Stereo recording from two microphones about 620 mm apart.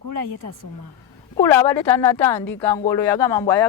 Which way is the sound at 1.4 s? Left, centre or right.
Centre.